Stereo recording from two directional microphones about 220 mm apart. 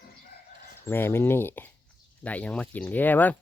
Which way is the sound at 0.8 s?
10° left (ahead or behind).